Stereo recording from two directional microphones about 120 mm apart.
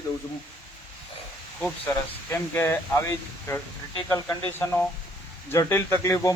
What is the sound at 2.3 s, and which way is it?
A man's voice, 20° left (ahead or behind).